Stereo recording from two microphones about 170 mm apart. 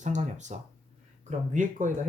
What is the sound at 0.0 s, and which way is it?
Speech, 45° right (ahead or behind).